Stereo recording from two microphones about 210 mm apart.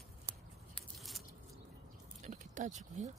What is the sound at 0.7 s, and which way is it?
Scissors, centre (ahead or behind).